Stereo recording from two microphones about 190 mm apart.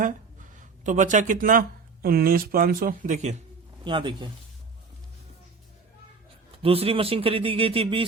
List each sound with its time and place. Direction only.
0.5 s speech: 40° right (ahead or behind)
3.8 s speech: 25° right (ahead or behind)
6.6 s speech: 30° right (ahead or behind)